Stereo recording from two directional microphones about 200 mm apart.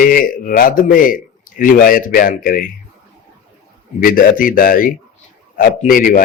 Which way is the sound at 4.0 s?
45° left (ahead or behind).